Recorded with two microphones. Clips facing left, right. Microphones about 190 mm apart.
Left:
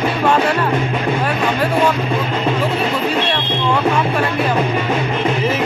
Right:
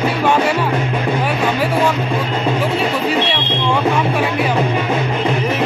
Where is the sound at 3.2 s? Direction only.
5° right (ahead or behind).